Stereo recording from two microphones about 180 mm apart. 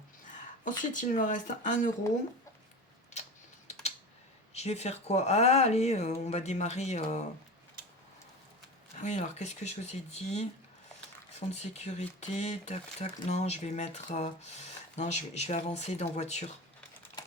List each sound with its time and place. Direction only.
0.8 s speech: 45° left (ahead or behind)
3.7 s typing: 40° left (ahead or behind)
4.5 s speech: 35° left (ahead or behind)
9.0 s speech: 40° left (ahead or behind)
17.2 s typing: 20° left (ahead or behind)